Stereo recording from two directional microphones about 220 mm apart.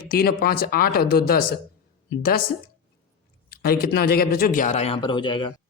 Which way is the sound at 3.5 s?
45° left (ahead or behind).